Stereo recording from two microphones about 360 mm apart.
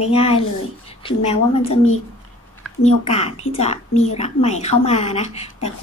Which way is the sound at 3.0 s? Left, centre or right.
Centre.